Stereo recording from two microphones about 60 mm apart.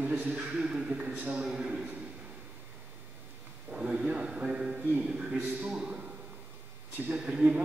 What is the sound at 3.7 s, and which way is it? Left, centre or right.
Speech, centre.